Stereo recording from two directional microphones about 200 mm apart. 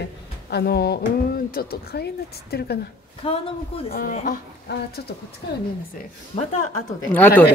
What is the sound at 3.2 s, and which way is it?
Speech, 25° left (ahead or behind).